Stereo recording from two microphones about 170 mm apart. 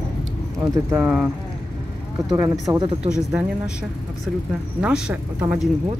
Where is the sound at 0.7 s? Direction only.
15° right (ahead or behind).